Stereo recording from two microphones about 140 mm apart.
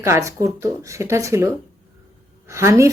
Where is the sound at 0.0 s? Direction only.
20° right (ahead or behind).